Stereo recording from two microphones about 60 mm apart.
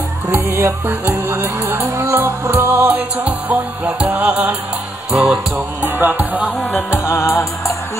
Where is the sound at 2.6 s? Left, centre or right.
Right.